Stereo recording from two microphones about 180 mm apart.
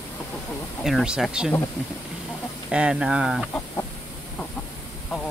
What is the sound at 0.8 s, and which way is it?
Speech, 5° right (ahead or behind).